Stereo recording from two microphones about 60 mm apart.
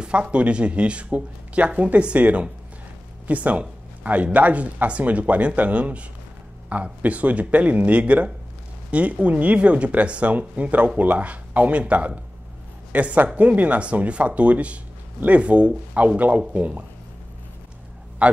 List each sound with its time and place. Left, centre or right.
0.0 s speech: centre
18.2 s a man's voice: right